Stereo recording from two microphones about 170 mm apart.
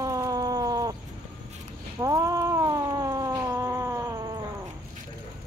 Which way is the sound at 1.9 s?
20° right (ahead or behind).